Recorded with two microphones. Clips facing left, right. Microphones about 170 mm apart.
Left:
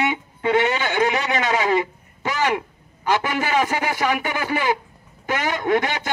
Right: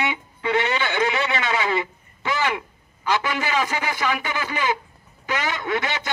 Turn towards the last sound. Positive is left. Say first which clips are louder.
# left 5 dB
turn(degrees=50)  # may be behind; listen again after turning